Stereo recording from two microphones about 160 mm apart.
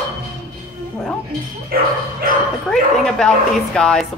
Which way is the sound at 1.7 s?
65° right (ahead or behind).